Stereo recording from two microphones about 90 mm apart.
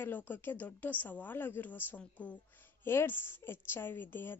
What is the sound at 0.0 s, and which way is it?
A woman's voice, 20° left (ahead or behind).